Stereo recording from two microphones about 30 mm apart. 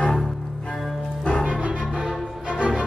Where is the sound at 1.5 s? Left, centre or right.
Right.